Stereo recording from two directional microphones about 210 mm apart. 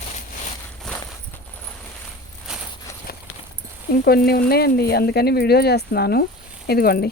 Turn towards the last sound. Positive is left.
turn(degrees=45)  # may be behind; listen again after turning